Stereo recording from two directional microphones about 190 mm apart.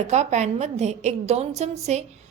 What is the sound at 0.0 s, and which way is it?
A woman's voice, 35° right (ahead or behind).